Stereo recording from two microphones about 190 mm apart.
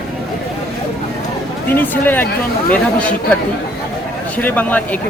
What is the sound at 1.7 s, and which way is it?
Speech, 10° left (ahead or behind).